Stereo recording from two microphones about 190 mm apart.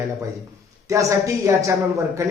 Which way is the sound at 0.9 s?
15° right (ahead or behind).